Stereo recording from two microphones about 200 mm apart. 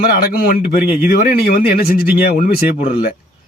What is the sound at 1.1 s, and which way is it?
Speech, 50° left (ahead or behind).